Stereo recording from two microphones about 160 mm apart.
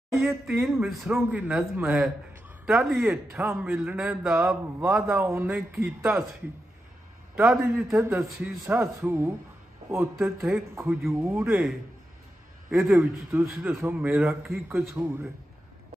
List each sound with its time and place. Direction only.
0.2 s a man's voice: 15° right (ahead or behind)
0.6 s a man's voice: centre (ahead or behind)
7.3 s a man's voice: 15° right (ahead or behind)
12.7 s speech: centre (ahead or behind)
13.3 s a man's voice: 15° right (ahead or behind)